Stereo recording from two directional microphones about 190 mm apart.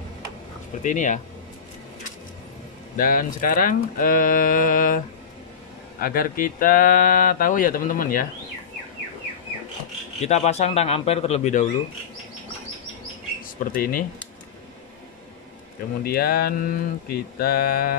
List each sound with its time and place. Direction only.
0.8 s a man's voice: 40° left (ahead or behind)
3.0 s speech: 45° left (ahead or behind)
10.2 s a man's voice: 35° left (ahead or behind)
13.6 s speech: 45° left (ahead or behind)
16.0 s speech: 50° left (ahead or behind)